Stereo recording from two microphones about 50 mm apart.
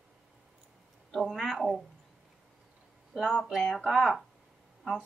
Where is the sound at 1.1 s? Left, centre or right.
Centre.